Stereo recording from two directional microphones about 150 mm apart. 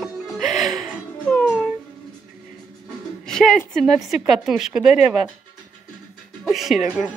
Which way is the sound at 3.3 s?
5° left (ahead or behind).